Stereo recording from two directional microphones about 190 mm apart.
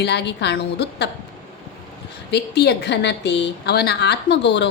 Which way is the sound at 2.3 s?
60° left (ahead or behind).